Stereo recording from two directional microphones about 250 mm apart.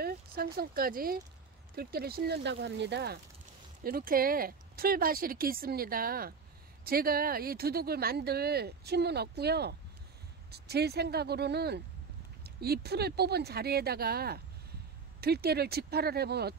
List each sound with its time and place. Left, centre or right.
0.0 s speech: right